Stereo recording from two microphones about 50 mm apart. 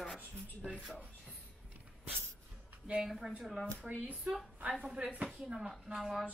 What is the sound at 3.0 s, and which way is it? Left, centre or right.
Speech, centre.